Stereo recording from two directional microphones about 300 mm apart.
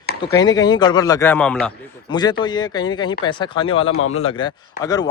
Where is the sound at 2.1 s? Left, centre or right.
Centre.